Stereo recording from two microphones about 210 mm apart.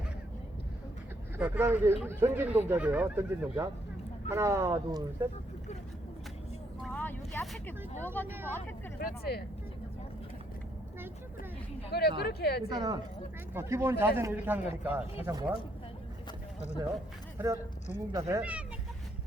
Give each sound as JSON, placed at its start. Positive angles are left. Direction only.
{"t": 1.4, "sound": "speech", "side_deg": -10}
{"t": 6.8, "sound": "vehicle", "side_deg": 5}
{"t": 8.0, "sound": "speech", "side_deg": 10}
{"t": 8.3, "sound": "speech", "side_deg": -10}
{"t": 9.0, "sound": "speech", "side_deg": 50}
{"t": 11.9, "sound": "speech", "side_deg": 50}
{"t": 12.6, "sound": "speech", "side_deg": -20}
{"t": 17.3, "sound": "speech", "side_deg": -15}